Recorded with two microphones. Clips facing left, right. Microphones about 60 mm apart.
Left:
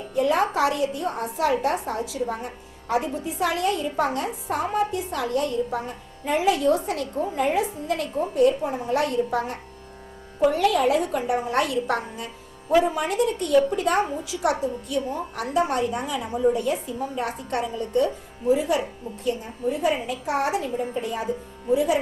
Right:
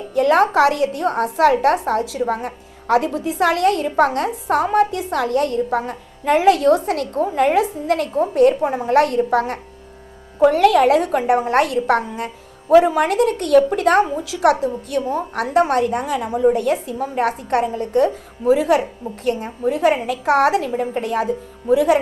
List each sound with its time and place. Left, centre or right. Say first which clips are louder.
0.1 s a woman's voice: right 7 dB; right
5.8 s a woman's voice: right 8 dB; right
12.7 s a woman's voice: right 8 dB; right
18.4 s speech: right 6 dB; right